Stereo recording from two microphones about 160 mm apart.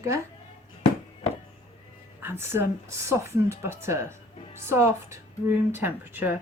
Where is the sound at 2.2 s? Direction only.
15° right (ahead or behind).